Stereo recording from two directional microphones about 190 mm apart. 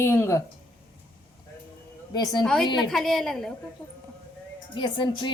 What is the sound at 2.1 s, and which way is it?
Speech, 20° left (ahead or behind).